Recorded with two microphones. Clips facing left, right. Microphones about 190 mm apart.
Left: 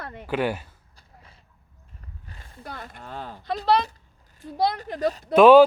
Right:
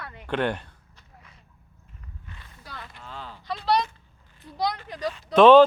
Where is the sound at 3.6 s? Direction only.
35° left (ahead or behind).